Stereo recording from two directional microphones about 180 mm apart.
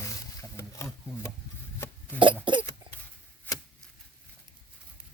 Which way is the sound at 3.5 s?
10° left (ahead or behind).